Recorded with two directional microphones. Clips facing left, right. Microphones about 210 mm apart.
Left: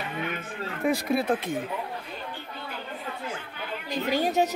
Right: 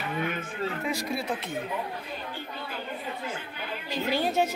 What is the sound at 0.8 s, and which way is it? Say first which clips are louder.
Speech: left 11 dB; 55° left (ahead or behind).